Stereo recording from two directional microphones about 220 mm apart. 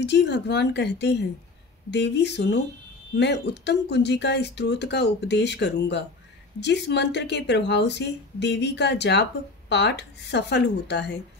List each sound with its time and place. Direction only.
0.0 s speech: 55° left (ahead or behind)